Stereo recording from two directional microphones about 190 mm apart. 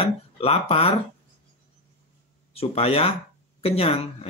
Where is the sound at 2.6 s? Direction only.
30° left (ahead or behind).